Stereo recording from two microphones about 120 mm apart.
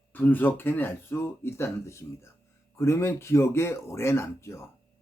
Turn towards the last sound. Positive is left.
turn(degrees=20)  # may be behind; listen again after turning